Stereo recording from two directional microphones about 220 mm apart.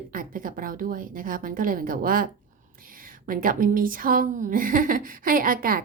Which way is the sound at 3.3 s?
40° right (ahead or behind).